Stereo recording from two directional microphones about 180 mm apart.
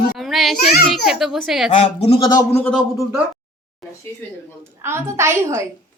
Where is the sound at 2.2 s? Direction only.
20° left (ahead or behind).